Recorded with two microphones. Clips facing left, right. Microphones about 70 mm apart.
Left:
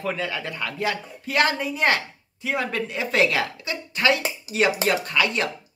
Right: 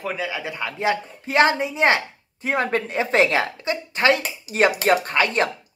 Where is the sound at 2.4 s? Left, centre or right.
Right.